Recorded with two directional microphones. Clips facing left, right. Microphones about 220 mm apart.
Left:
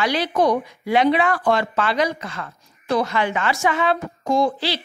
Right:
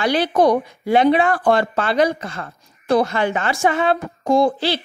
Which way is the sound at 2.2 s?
45° right (ahead or behind).